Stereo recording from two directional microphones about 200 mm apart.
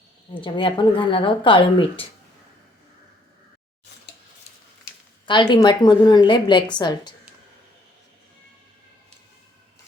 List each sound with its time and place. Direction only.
0.4 s a woman's voice: 25° left (ahead or behind)
5.2 s a woman's voice: 25° left (ahead or behind)